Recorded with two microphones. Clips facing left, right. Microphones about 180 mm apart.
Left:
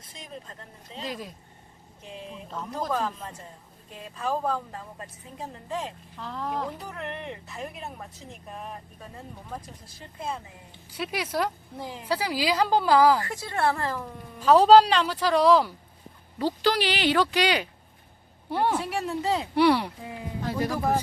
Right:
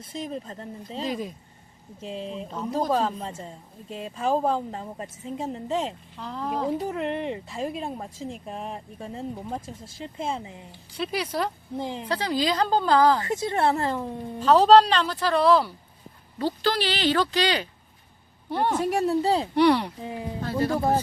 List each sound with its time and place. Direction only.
0.1 s speech: 30° right (ahead or behind)
2.0 s a woman's voice: 30° right (ahead or behind)
6.1 s speech: centre (ahead or behind)
6.7 s a woman's voice: 25° right (ahead or behind)
10.9 s a woman's voice: 5° left (ahead or behind)
11.8 s a woman's voice: 25° right (ahead or behind)
12.0 s a woman's voice: 10° left (ahead or behind)
13.2 s a woman's voice: 20° right (ahead or behind)
14.4 s a woman's voice: 10° left (ahead or behind)
18.8 s speech: 45° right (ahead or behind)
19.5 s a woman's voice: 10° left (ahead or behind)
20.0 s a woman's voice: 25° right (ahead or behind)
20.4 s a woman's voice: 15° left (ahead or behind)
20.7 s a woman's voice: 25° right (ahead or behind)